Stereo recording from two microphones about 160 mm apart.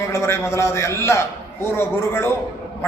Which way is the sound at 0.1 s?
15° left (ahead or behind).